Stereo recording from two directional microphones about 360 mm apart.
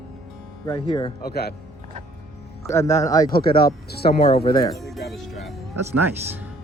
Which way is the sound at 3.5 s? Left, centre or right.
Left.